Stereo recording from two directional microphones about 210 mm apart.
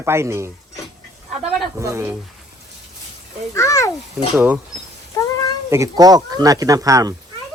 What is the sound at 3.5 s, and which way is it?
Speech, 15° left (ahead or behind).